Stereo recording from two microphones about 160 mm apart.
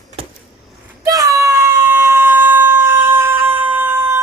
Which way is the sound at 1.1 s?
20° right (ahead or behind).